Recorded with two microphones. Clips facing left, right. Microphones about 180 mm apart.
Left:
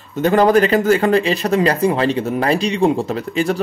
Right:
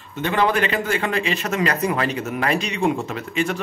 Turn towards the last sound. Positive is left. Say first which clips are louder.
# left 5 dB
turn(degrees=35)  # may be behind; listen again after turning